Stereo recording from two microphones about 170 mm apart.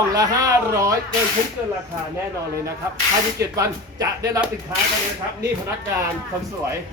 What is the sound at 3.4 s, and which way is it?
Speech, 20° right (ahead or behind).